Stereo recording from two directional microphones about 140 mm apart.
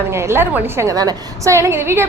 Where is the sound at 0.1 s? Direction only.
20° right (ahead or behind).